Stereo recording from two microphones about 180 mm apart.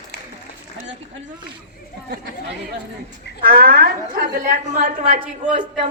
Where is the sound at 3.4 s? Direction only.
55° right (ahead or behind).